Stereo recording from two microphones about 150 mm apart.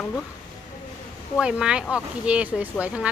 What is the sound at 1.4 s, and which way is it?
A woman's voice, 5° right (ahead or behind).